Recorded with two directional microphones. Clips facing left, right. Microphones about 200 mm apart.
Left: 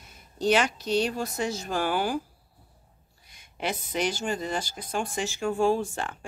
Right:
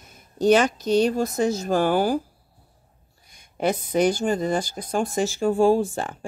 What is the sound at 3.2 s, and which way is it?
Speech, 45° right (ahead or behind).